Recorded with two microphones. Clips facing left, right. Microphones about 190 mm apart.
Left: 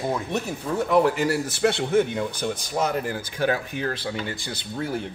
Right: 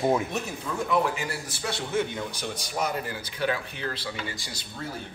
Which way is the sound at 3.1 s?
45° left (ahead or behind).